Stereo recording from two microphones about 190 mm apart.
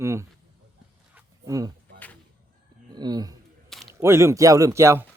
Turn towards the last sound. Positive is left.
turn(degrees=-15)  # may be behind; listen again after turning